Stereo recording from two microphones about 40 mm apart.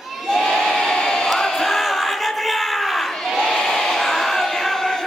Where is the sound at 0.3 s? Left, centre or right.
Centre.